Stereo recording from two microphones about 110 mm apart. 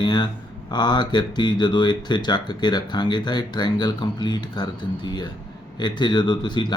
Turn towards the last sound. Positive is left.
turn(degrees=45)  # may be behind; listen again after turning